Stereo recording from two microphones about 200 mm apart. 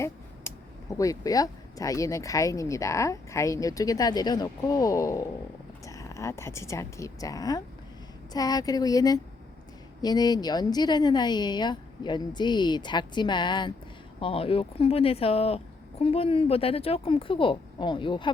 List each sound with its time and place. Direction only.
0.0 s speech: 15° left (ahead or behind)